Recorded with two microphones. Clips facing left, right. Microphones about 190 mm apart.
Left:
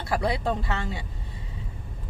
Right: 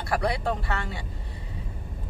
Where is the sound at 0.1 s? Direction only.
25° left (ahead or behind).